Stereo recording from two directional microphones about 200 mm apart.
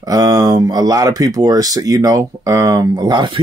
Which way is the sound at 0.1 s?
20° right (ahead or behind).